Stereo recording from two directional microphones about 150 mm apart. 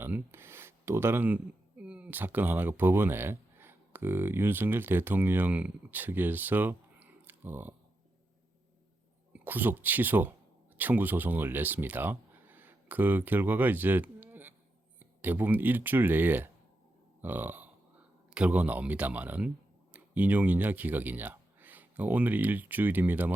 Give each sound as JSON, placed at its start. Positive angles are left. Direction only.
{"t": 0.0, "sound": "a sound", "side_deg": -15}
{"t": 1.8, "sound": "speech", "side_deg": -10}
{"t": 9.3, "sound": "speech", "side_deg": -15}